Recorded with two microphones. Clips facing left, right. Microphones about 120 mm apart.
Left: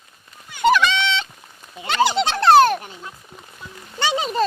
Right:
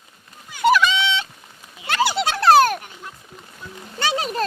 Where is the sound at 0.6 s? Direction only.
5° right (ahead or behind).